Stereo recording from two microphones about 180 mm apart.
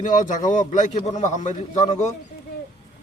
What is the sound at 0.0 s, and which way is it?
A man's voice, 45° left (ahead or behind).